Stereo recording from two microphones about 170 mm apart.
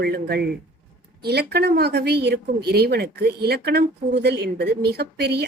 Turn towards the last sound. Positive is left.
turn(degrees=-70)  # may be behind; listen again after turning